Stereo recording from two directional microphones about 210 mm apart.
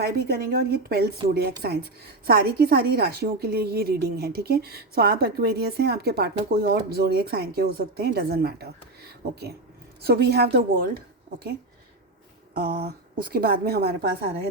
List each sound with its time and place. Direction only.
0.0 s a woman's voice: 45° right (ahead or behind)
12.5 s a woman's voice: 45° right (ahead or behind)